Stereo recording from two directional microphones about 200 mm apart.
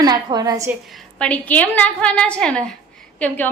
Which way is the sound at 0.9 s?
5° left (ahead or behind).